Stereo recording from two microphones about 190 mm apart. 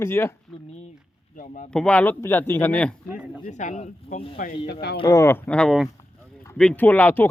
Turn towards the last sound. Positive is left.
turn(degrees=10)  # may be behind; listen again after turning